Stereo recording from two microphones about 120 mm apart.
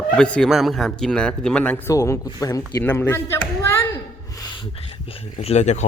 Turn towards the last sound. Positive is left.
turn(degrees=75)  # may be behind; listen again after turning